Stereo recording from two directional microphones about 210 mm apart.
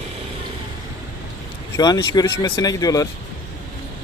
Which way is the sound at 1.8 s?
20° left (ahead or behind).